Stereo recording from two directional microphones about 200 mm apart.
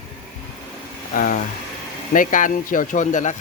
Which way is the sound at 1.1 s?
45° left (ahead or behind).